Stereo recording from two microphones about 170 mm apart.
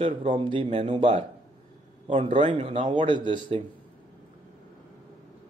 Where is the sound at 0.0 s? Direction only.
30° right (ahead or behind).